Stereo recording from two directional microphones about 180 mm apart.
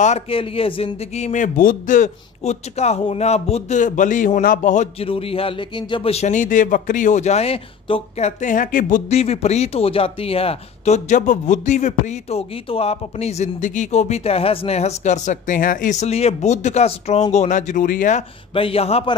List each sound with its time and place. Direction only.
0.0 s speech: 35° left (ahead or behind)
5.0 s speech: 30° left (ahead or behind); by 18.2 s 50° left (ahead or behind)
18.5 s speech: 30° left (ahead or behind)